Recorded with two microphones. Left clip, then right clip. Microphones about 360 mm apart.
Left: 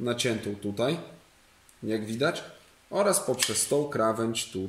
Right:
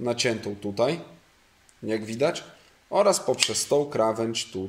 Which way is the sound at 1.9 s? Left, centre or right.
Centre.